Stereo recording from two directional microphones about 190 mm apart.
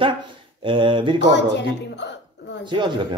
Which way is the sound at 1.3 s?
65° left (ahead or behind).